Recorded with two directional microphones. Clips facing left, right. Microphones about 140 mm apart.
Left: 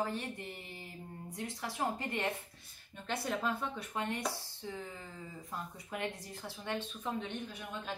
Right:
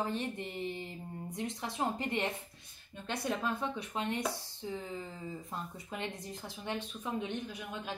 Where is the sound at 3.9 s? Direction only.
20° right (ahead or behind).